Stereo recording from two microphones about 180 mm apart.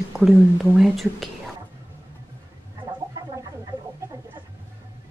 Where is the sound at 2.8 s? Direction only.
20° right (ahead or behind).